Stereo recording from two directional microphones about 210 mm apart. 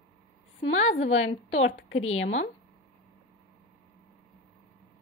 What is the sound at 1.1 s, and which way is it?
A woman's voice, 65° left (ahead or behind).